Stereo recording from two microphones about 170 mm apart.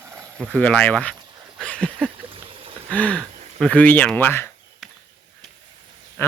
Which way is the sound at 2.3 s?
35° right (ahead or behind).